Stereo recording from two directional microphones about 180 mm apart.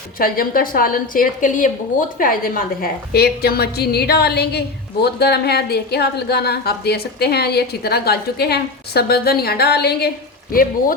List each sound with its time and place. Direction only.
0.2 s a woman's voice: 55° left (ahead or behind)
10.5 s a woman's voice: 50° left (ahead or behind)